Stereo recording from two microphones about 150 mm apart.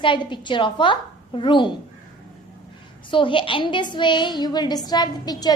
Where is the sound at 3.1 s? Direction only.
35° left (ahead or behind).